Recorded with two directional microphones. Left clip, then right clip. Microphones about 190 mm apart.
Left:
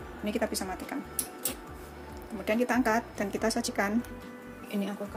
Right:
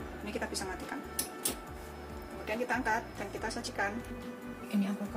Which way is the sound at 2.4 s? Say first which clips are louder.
Left 5 dB; 45° left (ahead or behind).